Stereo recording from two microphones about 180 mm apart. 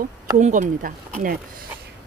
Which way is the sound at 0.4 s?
45° right (ahead or behind).